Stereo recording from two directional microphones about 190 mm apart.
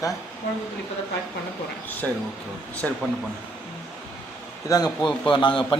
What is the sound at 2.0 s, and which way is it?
Speech, 5° left (ahead or behind).